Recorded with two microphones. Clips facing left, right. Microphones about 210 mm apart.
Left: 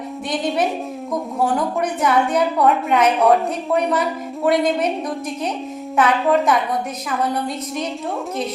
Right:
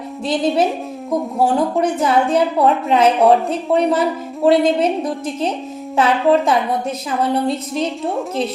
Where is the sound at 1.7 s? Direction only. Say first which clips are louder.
Right 3 dB; 30° right (ahead or behind).